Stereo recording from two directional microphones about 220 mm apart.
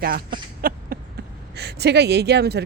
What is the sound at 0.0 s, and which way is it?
Speech, 40° right (ahead or behind).